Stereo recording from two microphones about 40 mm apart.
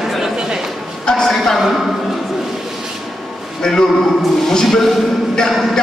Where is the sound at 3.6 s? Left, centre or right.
Centre.